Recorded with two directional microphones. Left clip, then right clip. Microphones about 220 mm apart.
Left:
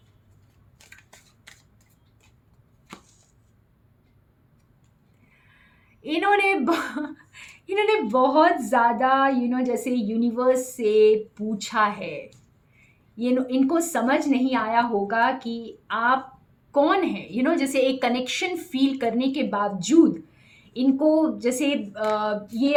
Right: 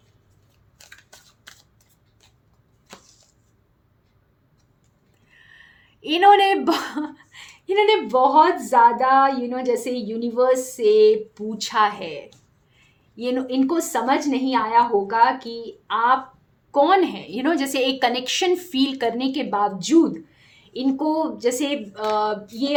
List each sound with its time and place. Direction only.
6.0 s a woman's voice: 40° right (ahead or behind)